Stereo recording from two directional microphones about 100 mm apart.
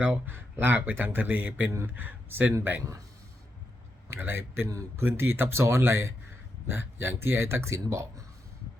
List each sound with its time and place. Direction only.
0.0 s speech: 20° right (ahead or behind)
4.1 s speech: 20° right (ahead or behind)